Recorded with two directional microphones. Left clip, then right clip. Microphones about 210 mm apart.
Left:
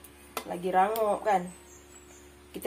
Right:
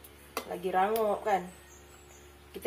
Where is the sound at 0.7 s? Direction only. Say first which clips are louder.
Left 3 dB; 45° left (ahead or behind).